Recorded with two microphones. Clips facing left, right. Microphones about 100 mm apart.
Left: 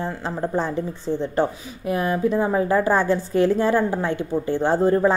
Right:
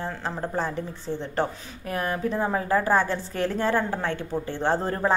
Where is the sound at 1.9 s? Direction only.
15° left (ahead or behind).